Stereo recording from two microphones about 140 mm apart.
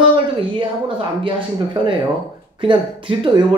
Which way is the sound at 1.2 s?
40° right (ahead or behind).